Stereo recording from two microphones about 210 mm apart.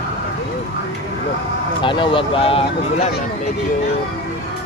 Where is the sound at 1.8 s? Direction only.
25° left (ahead or behind).